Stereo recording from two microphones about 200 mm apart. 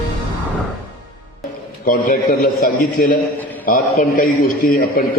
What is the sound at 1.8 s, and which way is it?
A man's voice, 45° left (ahead or behind).